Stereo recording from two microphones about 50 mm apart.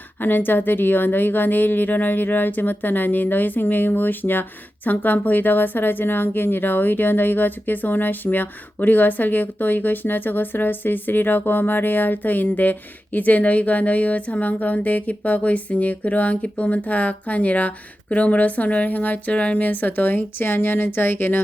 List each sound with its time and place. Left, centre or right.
0.2 s speech: left